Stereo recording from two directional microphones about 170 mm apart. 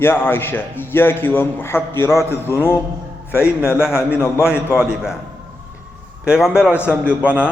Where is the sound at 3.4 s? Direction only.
5° right (ahead or behind).